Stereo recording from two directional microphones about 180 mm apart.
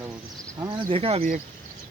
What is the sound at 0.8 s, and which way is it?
Speech, 35° right (ahead or behind).